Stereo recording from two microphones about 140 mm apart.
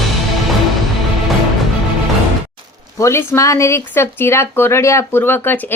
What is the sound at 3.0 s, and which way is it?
Speech, 20° left (ahead or behind).